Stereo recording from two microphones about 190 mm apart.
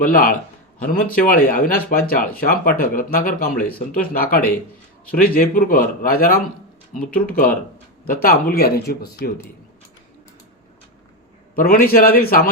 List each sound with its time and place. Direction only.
0.0 s speech: 45° left (ahead or behind)
11.5 s speech: 50° left (ahead or behind)